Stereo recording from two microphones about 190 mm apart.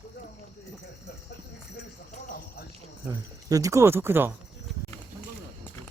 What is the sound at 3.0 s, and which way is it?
Speech, 20° right (ahead or behind).